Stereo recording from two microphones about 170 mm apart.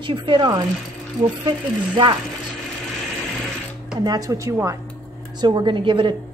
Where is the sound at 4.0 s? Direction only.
20° right (ahead or behind).